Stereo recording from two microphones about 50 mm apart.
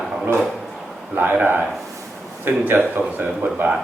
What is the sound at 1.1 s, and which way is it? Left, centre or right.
Speech, right.